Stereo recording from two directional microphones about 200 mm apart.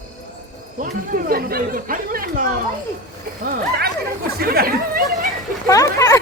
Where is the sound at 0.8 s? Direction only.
45° right (ahead or behind).